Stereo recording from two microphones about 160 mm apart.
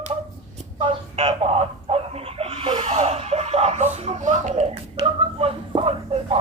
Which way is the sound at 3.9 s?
40° right (ahead or behind).